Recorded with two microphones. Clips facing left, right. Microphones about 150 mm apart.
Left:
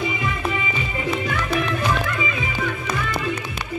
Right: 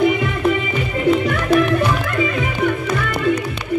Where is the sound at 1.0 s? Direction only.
60° right (ahead or behind).